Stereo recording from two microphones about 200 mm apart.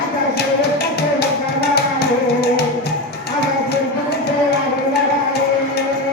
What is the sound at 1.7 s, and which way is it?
Music, 50° left (ahead or behind).